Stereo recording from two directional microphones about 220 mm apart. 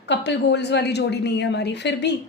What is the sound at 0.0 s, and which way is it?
A woman's voice, 50° left (ahead or behind).